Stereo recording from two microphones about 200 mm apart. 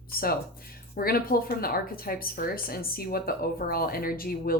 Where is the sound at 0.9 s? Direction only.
45° left (ahead or behind).